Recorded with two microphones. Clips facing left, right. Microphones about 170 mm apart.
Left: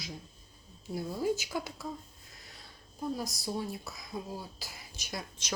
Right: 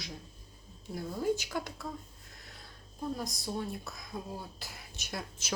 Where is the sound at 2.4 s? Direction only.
Centre (ahead or behind).